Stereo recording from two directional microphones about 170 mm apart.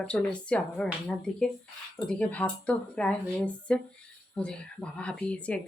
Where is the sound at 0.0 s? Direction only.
5° left (ahead or behind).